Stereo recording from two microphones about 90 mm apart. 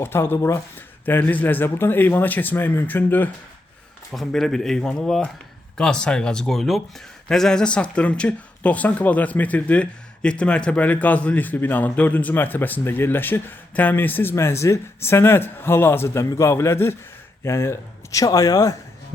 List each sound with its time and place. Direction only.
0.0 s speech: 25° left (ahead or behind)
4.1 s speech: centre (ahead or behind); by 18.8 s 40° left (ahead or behind)